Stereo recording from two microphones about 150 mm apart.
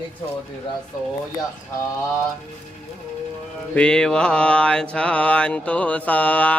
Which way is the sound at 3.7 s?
5° left (ahead or behind).